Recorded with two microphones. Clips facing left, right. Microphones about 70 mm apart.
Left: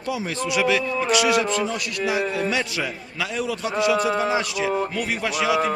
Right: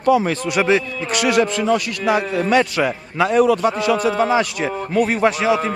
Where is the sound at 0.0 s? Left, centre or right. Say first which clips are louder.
Right 10 dB; right.